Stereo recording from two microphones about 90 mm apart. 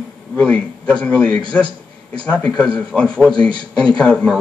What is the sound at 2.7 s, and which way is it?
Speech, 10° left (ahead or behind).